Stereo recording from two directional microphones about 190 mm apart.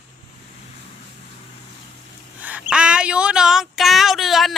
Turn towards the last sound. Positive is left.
turn(degrees=0)  # may be behind; listen again after turning